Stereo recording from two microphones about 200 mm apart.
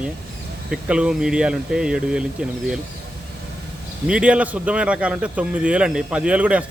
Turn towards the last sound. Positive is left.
turn(degrees=-5)  # may be behind; listen again after turning